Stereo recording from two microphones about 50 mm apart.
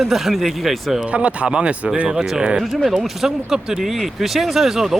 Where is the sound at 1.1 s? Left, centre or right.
Right.